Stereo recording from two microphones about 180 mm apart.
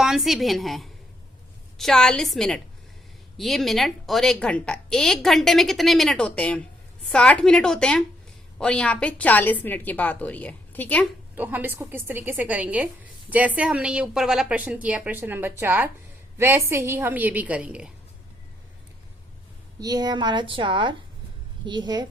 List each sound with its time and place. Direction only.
0.0 s a woman's voice: centre (ahead or behind)
11.3 s a woman's voice: 10° right (ahead or behind)
19.8 s a woman's voice: 20° right (ahead or behind)